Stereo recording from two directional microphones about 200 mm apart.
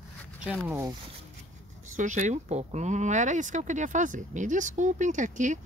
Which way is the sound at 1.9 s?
40° right (ahead or behind).